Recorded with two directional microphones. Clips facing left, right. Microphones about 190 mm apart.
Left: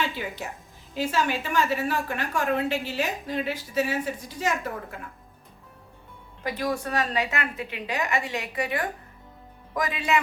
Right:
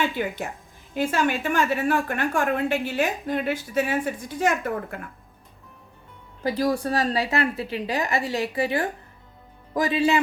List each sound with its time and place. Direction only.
0.2 s a woman's voice: 55° right (ahead or behind)
6.4 s a woman's voice: 35° right (ahead or behind)